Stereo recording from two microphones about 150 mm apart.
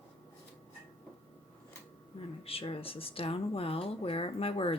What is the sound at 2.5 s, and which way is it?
Speech, 40° left (ahead or behind).